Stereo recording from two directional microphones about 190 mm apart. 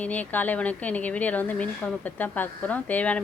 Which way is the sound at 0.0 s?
10° left (ahead or behind).